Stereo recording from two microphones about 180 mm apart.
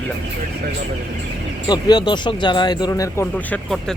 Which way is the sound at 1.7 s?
25° left (ahead or behind).